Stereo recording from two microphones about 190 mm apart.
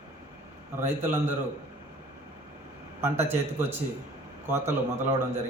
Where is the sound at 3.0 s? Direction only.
15° right (ahead or behind).